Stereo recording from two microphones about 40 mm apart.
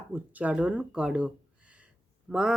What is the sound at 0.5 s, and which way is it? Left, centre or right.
Speech, right.